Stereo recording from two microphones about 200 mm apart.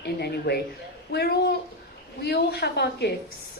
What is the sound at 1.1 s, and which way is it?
A woman's voice, 55° left (ahead or behind).